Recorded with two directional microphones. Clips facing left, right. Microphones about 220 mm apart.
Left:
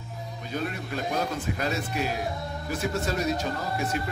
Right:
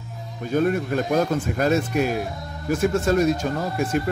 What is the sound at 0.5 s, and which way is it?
Speech, 50° right (ahead or behind).